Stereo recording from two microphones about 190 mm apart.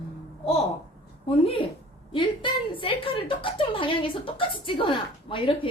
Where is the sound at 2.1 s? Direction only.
25° left (ahead or behind).